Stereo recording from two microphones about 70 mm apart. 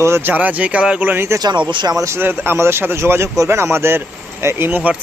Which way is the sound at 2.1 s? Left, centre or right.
Right.